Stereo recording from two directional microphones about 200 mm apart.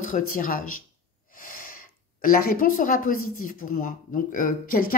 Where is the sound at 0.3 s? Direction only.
45° left (ahead or behind).